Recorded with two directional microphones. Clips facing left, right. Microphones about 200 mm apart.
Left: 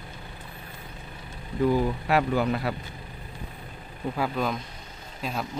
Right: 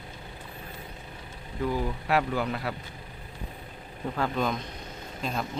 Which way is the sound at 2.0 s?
25° left (ahead or behind).